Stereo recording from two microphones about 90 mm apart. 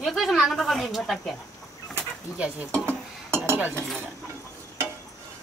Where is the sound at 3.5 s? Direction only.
25° right (ahead or behind).